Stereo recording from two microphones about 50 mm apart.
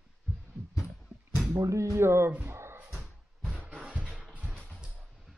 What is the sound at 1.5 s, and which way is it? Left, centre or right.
Speech, right.